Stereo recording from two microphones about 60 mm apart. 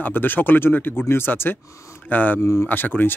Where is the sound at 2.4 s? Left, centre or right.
Centre.